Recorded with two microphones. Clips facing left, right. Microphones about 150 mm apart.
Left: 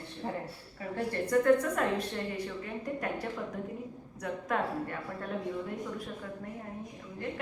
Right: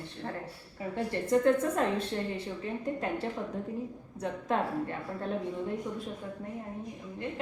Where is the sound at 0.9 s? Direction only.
20° right (ahead or behind).